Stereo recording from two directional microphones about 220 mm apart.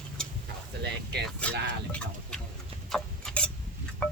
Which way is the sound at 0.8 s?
50° right (ahead or behind).